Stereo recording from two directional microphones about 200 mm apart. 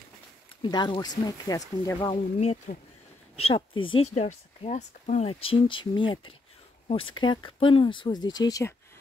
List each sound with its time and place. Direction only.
0.6 s speech: 20° left (ahead or behind)
2.3 s speech: 35° left (ahead or behind); by 8.7 s 15° left (ahead or behind)